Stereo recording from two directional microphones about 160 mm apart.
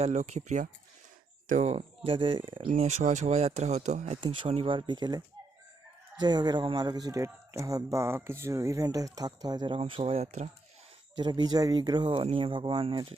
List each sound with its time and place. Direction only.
0.0 s speech: 45° right (ahead or behind)
2.6 s speech: 45° right (ahead or behind)
4.2 s speech: 35° right (ahead or behind)
11.2 s speech: 30° right (ahead or behind)